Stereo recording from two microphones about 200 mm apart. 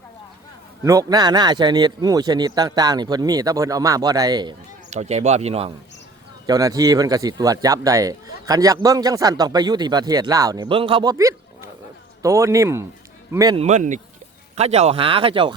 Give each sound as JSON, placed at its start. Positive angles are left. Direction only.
{"t": 0.9, "sound": "speech", "side_deg": -20}
{"t": 4.9, "sound": "speech", "side_deg": -35}
{"t": 6.4, "sound": "speech", "side_deg": -20}
{"t": 13.6, "sound": "speech", "side_deg": -35}